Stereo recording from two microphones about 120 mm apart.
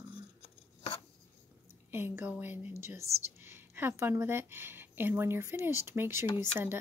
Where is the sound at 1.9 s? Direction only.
20° right (ahead or behind).